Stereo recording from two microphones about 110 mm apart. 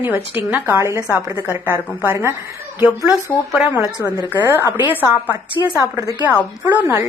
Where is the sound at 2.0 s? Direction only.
25° right (ahead or behind).